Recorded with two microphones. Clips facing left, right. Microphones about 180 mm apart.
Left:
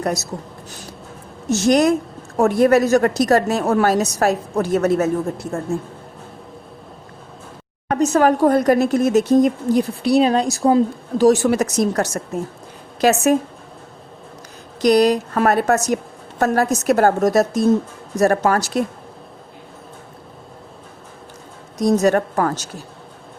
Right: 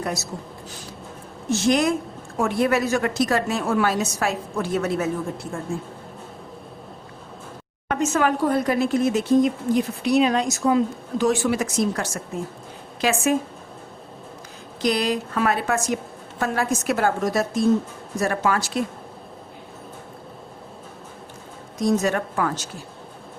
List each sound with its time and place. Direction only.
0.0 s speech: 45° left (ahead or behind)
1.5 s speech: 40° left (ahead or behind)
7.9 s speech: 35° left (ahead or behind)
14.8 s speech: 40° left (ahead or behind)
21.8 s speech: 40° left (ahead or behind)